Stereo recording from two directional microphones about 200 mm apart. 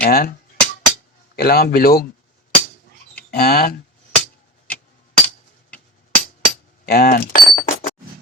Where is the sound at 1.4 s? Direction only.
50° left (ahead or behind).